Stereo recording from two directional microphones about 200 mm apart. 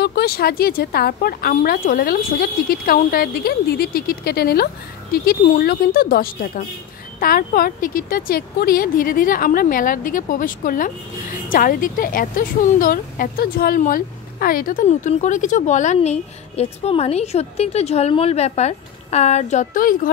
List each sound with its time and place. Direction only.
0.0 s speech: 50° left (ahead or behind)